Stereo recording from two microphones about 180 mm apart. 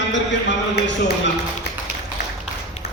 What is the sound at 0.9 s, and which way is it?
Speech, 80° left.